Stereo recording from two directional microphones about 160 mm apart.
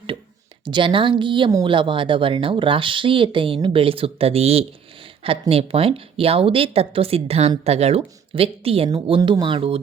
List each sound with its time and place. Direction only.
0.6 s a woman's voice: 30° right (ahead or behind)